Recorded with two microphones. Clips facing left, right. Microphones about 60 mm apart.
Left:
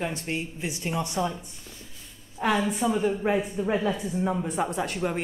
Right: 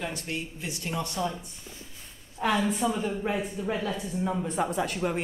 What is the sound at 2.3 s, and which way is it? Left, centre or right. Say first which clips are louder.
A woman's voice: left 1 dB; centre.